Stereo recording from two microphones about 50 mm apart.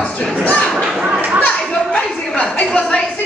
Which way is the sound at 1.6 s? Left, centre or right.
Centre.